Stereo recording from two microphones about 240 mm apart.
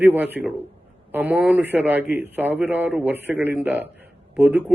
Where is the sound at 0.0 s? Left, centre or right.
Centre.